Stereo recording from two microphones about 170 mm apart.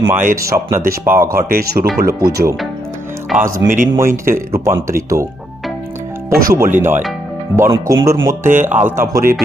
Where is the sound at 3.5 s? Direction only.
15° right (ahead or behind).